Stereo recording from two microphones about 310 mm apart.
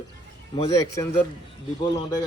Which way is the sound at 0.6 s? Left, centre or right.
Centre.